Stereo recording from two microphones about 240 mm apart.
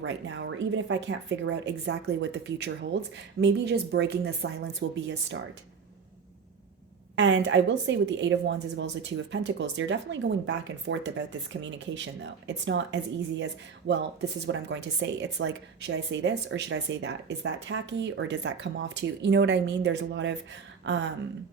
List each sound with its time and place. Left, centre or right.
0.0 s speech: right
7.2 s speech: right
20.8 s a sound: right